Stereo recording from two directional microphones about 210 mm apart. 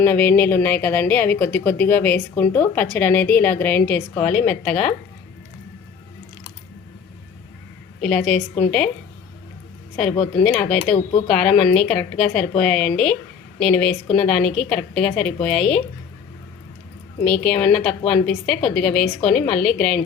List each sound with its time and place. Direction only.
0.0 s a woman's voice: 10° left (ahead or behind)
8.0 s a woman's voice: 5° left (ahead or behind)
10.4 s a woman's voice: 5° left (ahead or behind)
17.2 s a woman's voice: centre (ahead or behind)